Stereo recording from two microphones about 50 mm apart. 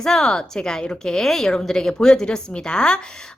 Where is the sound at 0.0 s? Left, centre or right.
Centre.